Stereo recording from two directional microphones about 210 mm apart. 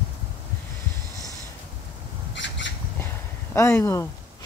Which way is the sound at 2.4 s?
60° left (ahead or behind).